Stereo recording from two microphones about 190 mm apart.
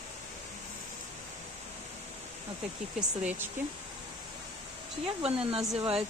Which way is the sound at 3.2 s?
10° right (ahead or behind).